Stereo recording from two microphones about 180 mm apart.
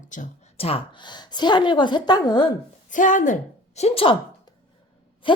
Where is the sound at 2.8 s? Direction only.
45° left (ahead or behind); by 4.5 s 30° left (ahead or behind).